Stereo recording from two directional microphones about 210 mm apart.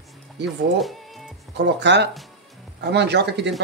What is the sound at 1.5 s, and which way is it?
Speech, 55° right (ahead or behind).